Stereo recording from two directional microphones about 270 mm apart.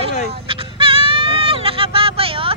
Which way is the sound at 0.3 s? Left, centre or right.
Centre.